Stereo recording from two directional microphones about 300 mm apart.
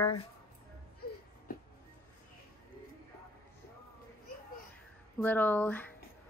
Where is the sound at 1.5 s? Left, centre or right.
Left.